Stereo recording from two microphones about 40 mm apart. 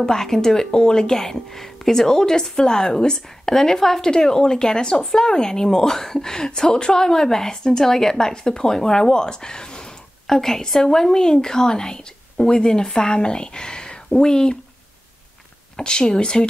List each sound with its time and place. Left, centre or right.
0.0 s speech: centre
15.7 s speech: left